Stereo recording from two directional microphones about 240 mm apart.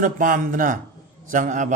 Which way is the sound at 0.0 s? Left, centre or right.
Right.